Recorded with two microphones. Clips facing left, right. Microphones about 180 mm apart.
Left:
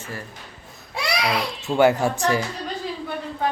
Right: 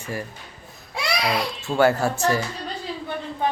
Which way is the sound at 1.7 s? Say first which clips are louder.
Left 1 dB; 15° left (ahead or behind).